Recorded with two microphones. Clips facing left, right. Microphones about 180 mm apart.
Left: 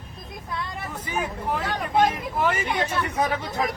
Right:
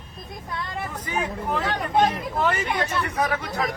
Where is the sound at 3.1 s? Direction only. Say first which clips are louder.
Even; 25° left (ahead or behind).